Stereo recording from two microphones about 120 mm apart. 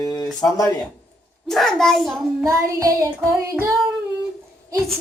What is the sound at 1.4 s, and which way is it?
A child's voice, 5° left (ahead or behind).